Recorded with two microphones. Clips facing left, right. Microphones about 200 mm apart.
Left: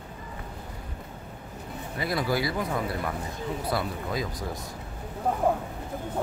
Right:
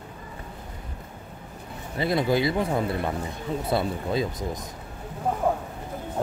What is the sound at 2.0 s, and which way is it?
Speech, 25° right (ahead or behind).